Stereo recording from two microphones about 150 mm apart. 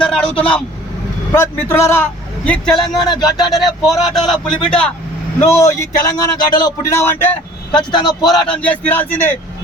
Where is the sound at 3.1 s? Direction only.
30° left (ahead or behind).